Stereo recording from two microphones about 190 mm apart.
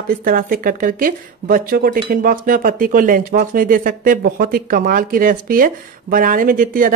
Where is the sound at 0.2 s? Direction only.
45° right (ahead or behind).